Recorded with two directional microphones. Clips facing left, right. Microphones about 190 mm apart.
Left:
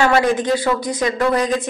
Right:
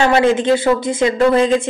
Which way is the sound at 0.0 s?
25° right (ahead or behind).